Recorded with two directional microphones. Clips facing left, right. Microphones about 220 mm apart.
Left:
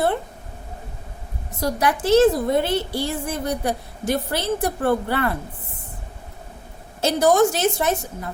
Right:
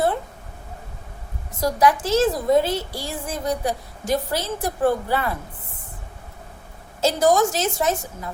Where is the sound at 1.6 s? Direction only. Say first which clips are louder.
Right 2 dB; 60° left (ahead or behind).